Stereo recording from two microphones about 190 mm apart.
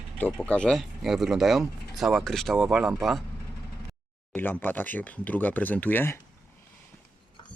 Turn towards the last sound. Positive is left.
turn(degrees=10)  # may be behind; listen again after turning